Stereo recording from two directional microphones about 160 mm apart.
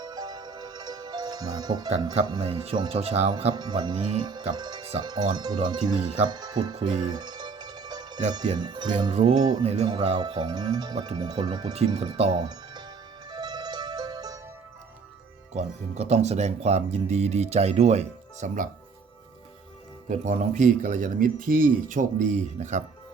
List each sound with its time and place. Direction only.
0.0 s music: 25° right (ahead or behind)
2.2 s speech: 30° right (ahead or behind)
6.2 s music: 25° right (ahead or behind)
8.3 s speech: 25° right (ahead or behind)
12.3 s music: 25° right (ahead or behind)
15.5 s speech: 40° right (ahead or behind)
20.1 s speech: 45° right (ahead or behind)